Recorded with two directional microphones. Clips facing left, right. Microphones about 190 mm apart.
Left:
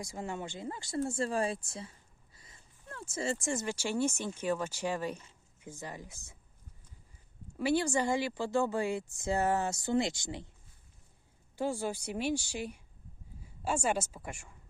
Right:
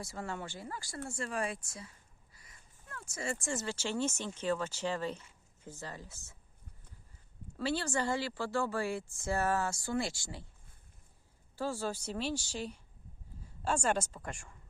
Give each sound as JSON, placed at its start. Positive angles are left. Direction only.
{"t": 0.0, "sound": "speech", "side_deg": 15}
{"t": 7.6, "sound": "speech", "side_deg": 15}
{"t": 11.5, "sound": "speech", "side_deg": 15}